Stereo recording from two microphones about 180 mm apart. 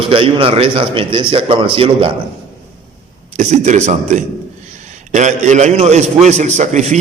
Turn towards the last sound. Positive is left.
turn(degrees=-40)  # may be behind; listen again after turning